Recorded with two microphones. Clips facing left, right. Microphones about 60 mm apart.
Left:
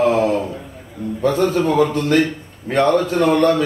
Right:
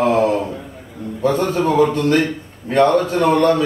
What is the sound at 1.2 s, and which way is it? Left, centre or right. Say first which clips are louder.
Speech: even; right.